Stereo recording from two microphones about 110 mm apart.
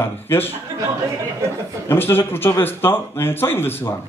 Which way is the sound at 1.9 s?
20° left (ahead or behind).